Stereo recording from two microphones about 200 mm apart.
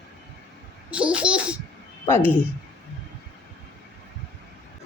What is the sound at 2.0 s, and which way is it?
Speech, 10° left (ahead or behind).